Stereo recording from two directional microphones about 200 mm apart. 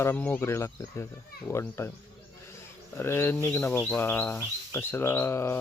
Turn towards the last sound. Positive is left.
turn(degrees=10)  # may be behind; listen again after turning